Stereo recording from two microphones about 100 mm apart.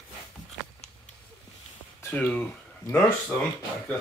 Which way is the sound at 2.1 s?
15° left (ahead or behind).